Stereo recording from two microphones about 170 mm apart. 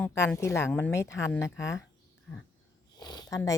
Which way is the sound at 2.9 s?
25° left (ahead or behind).